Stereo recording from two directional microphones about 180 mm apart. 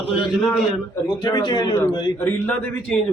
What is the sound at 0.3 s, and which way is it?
Speech, centre (ahead or behind).